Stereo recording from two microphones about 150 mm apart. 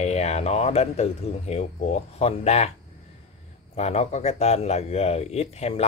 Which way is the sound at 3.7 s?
45° left (ahead or behind).